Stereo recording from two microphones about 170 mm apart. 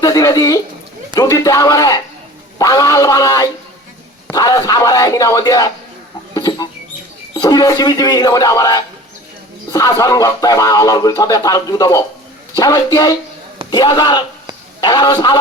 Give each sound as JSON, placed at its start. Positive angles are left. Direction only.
{"t": 0.0, "sound": "speech", "side_deg": 20}
{"t": 6.3, "sound": "chicken", "side_deg": 20}
{"t": 7.3, "sound": "speech", "side_deg": 20}